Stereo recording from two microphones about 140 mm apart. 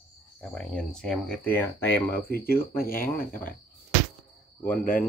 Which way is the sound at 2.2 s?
90° left.